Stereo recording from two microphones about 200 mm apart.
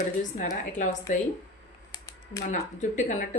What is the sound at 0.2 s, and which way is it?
Speech, 40° left (ahead or behind).